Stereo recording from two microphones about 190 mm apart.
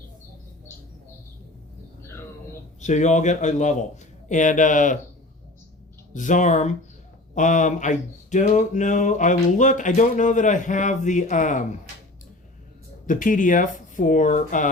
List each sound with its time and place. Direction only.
2.8 s speech: 40° left (ahead or behind)
6.1 s speech: 40° left (ahead or behind)
13.1 s speech: 45° left (ahead or behind)